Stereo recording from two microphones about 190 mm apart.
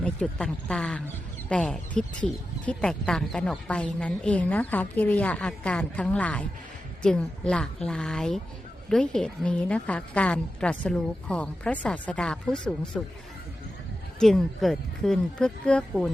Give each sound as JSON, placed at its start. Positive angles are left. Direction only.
{"t": 0.0, "sound": "a woman's voice", "side_deg": 5}
{"t": 14.2, "sound": "a woman's voice", "side_deg": 0}